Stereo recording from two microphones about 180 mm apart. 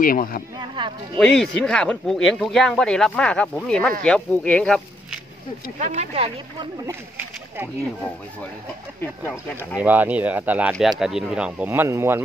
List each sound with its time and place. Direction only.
0.0 s speech: 50° left (ahead or behind)
0.6 s speech: 25° right (ahead or behind)
1.1 s speech: 5° left (ahead or behind)
5.8 s speech: 40° right (ahead or behind)
6.9 s speech: 10° right (ahead or behind)
9.2 s speech: 10° left (ahead or behind)
9.8 s speech: 10° right (ahead or behind)